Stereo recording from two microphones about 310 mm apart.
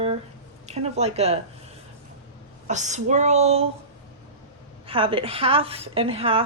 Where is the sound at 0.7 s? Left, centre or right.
Right.